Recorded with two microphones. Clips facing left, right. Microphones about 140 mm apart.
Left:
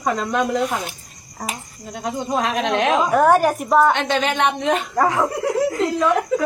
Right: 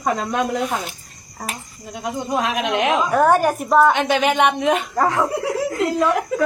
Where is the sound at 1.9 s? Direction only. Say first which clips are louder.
Even; 5° right (ahead or behind).